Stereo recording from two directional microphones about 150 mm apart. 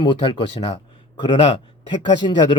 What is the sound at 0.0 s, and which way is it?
Speech, 30° left (ahead or behind).